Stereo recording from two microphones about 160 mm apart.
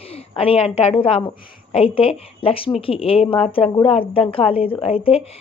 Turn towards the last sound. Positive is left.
turn(degrees=35)  # may be behind; listen again after turning